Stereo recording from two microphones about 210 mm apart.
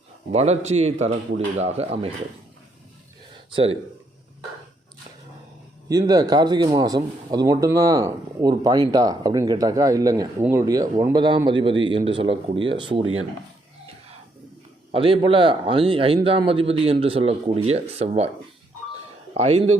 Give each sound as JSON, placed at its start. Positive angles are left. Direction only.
{"t": 0.3, "sound": "a man's voice", "side_deg": -30}
{"t": 5.9, "sound": "a man's voice", "side_deg": -20}
{"t": 13.0, "sound": "speech", "side_deg": -75}
{"t": 14.9, "sound": "a man's voice", "side_deg": -25}
{"t": 19.3, "sound": "speech", "side_deg": -30}